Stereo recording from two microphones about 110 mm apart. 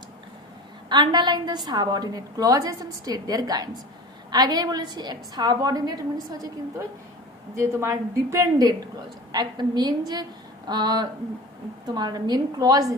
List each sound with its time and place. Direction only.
0.9 s a woman's voice: 45° right (ahead or behind)
7.5 s a woman's voice: 25° right (ahead or behind)